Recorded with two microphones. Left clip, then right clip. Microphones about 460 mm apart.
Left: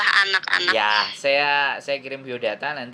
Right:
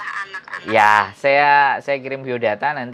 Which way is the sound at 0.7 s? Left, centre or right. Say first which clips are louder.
Right 7 dB; right.